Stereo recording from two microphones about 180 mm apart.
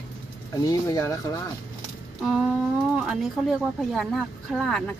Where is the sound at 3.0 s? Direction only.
Centre (ahead or behind).